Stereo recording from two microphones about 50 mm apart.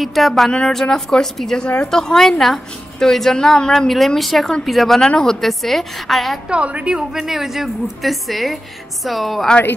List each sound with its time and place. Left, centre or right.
0.0 s a woman's voice: centre
5.0 s a woman's voice: centre
6.5 s a woman's voice: right
7.2 s a woman's voice: centre